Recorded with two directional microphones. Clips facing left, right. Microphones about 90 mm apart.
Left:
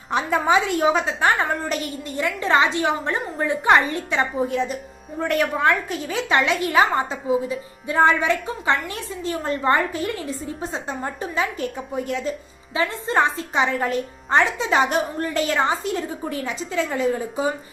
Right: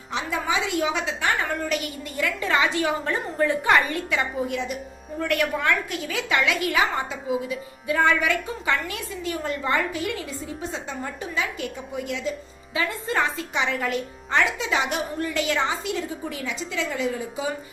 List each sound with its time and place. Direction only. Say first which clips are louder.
0.1 s a woman's voice: left 7 dB; 50° left (ahead or behind)
12.7 s a woman's voice: left 4 dB; 30° left (ahead or behind)